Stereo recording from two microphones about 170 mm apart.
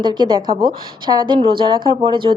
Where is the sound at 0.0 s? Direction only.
25° right (ahead or behind).